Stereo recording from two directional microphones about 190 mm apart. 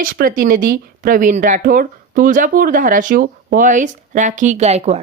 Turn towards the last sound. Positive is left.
turn(degrees=-35)  # may be behind; listen again after turning